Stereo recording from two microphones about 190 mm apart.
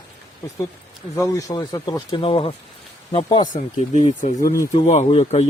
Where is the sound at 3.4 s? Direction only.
40° left (ahead or behind).